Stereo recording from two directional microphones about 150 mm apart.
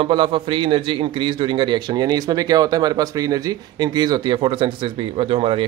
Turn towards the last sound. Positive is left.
turn(degrees=-35)  # may be behind; listen again after turning